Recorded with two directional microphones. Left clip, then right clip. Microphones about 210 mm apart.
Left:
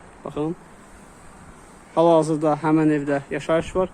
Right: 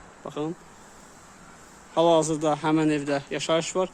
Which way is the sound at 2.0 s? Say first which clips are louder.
Left 4 dB; centre (ahead or behind).